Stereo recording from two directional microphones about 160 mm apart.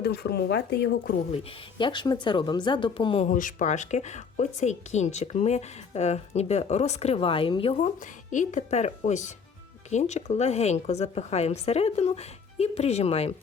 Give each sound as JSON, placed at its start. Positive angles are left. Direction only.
{"t": 0.0, "sound": "speech", "side_deg": 90}
{"t": 1.8, "sound": "speech", "side_deg": 30}
{"t": 3.2, "sound": "a woman's voice", "side_deg": 55}